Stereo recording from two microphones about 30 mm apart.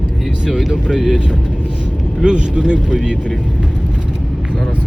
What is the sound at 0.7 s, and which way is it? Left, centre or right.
Speech, right.